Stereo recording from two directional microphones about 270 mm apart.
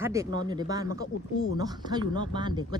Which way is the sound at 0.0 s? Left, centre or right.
Centre.